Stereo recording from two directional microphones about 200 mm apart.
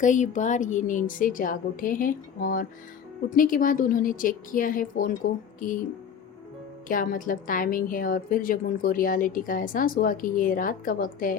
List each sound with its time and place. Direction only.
0.0 s a woman's voice: 40° left (ahead or behind)
6.8 s a woman's voice: 45° left (ahead or behind)